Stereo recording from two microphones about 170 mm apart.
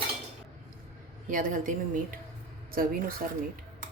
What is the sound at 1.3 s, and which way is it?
Speech, 50° right (ahead or behind).